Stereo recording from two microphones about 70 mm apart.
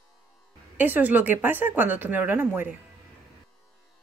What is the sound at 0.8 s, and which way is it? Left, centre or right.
Speech, right.